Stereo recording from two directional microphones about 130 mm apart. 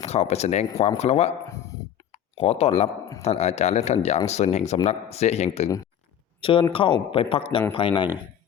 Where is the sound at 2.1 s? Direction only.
55° left (ahead or behind).